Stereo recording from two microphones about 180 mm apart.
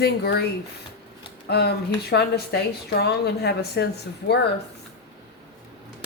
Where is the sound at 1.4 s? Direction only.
65° left (ahead or behind).